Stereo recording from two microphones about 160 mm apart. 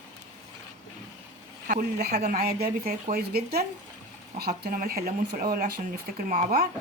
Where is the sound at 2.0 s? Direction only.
85° right; by 6.7 s 60° right (ahead or behind).